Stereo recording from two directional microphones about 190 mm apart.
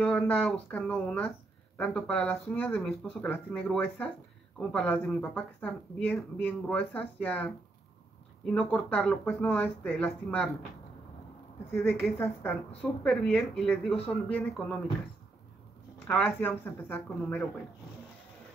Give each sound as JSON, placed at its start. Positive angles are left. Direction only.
{"t": 0.0, "sound": "speech", "side_deg": 5}
{"t": 12.2, "sound": "speech", "side_deg": 10}
{"t": 16.1, "sound": "speech", "side_deg": 10}